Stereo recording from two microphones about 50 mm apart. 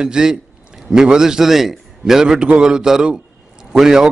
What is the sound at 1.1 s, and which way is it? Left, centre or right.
A man's voice, centre.